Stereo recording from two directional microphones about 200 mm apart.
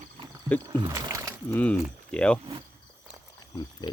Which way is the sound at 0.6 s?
20° right (ahead or behind).